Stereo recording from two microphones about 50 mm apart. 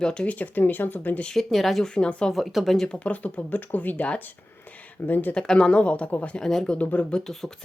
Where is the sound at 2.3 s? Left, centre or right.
Centre.